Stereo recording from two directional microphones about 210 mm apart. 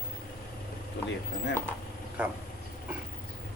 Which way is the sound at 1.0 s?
55° left (ahead or behind).